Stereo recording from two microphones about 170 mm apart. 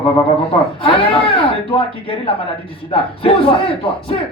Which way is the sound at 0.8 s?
30° left (ahead or behind).